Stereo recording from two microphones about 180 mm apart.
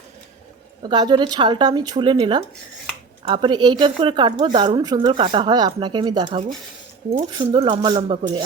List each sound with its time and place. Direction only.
0.8 s a woman's voice: 25° right (ahead or behind)